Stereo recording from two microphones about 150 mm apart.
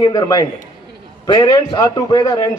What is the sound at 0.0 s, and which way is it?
Speech, 25° left (ahead or behind).